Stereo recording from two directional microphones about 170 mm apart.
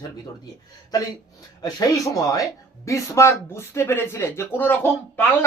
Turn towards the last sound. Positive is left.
turn(degrees=10)  # may be behind; listen again after turning